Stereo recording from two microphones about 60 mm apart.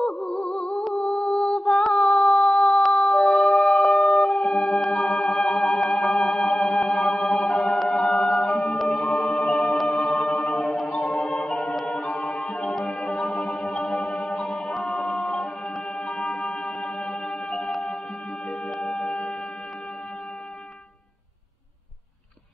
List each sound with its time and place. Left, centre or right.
0.0 s music: centre
0.7 s a sound: centre
3.5 s music: centre
8.1 s a capella: centre
8.7 s music: centre
12.4 s music: centre
12.7 s music: centre
15.1 s a capella: centre
16.1 s music: centre
18.7 s music: centre